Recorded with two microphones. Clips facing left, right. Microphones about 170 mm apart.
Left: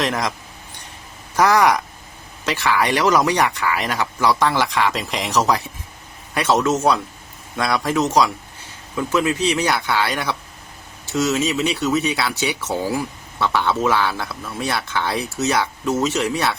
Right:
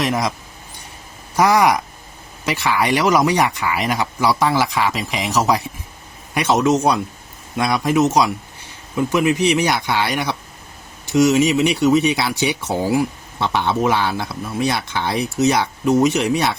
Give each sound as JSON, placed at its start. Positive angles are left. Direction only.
{"t": 0.0, "sound": "speech", "side_deg": -10}
{"t": 1.4, "sound": "speech", "side_deg": -10}